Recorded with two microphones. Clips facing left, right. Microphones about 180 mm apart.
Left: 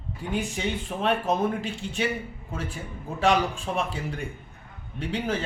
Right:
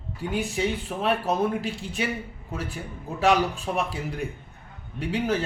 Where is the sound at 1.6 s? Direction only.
40° right (ahead or behind).